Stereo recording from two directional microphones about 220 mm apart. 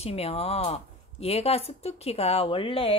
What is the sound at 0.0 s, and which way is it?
Speech, 30° left (ahead or behind).